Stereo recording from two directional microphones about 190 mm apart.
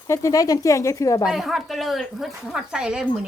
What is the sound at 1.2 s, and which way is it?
Speech, centre (ahead or behind).